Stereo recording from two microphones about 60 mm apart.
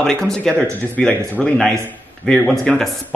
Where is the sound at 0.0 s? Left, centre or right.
Centre.